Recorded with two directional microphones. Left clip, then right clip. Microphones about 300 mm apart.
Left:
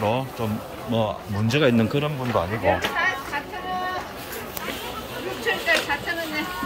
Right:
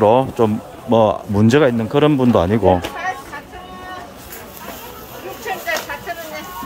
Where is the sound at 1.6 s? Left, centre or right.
Centre.